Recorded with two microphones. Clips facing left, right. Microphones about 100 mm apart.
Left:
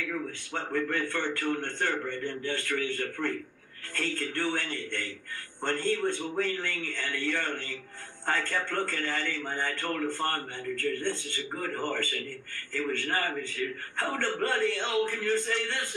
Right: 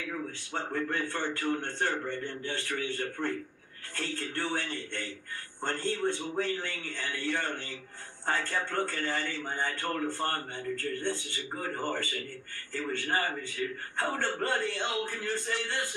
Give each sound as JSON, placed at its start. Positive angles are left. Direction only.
{"t": 0.0, "sound": "a man's voice", "side_deg": -20}